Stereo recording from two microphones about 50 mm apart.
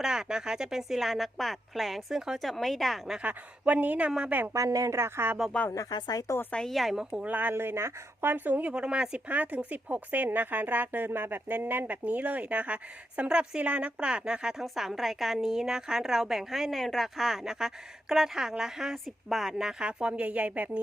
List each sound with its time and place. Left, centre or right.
0.0 s a woman's voice: centre
2.4 s a woman's voice: centre
3.2 s a woman's voice: right
4.5 s speech: right
6.3 s a woman's voice: left
6.7 s a woman's voice: centre
7.2 s speech: right
7.5 s speech: right
8.3 s speech: right
8.6 s speech: right
13.6 s a woman's voice: right
14.6 s a woman's voice: centre
17.2 s a woman's voice: centre
19.8 s a woman's voice: right